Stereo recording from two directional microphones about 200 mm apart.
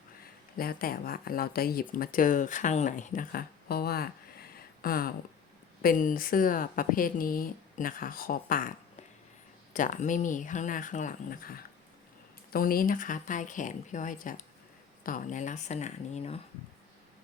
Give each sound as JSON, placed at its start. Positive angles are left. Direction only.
{"t": 0.5, "sound": "speech", "side_deg": 50}
{"t": 9.7, "sound": "speech", "side_deg": 40}
{"t": 12.5, "sound": "speech", "side_deg": 45}